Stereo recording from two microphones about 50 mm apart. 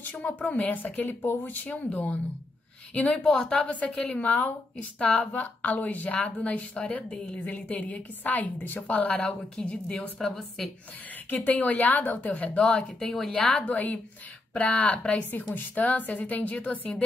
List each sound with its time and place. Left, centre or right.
0.0 s a woman's voice: left
3.3 s a woman's voice: centre
3.5 s a woman's voice: left
8.9 s a woman's voice: left
10.1 s a woman's voice: centre
11.2 s a woman's voice: left; by 12.8 s centre
13.0 s a woman's voice: centre
13.7 s a woman's voice: left
15.5 s a woman's voice: left